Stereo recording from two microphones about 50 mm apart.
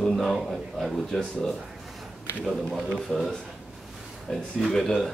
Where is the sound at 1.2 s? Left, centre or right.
Centre.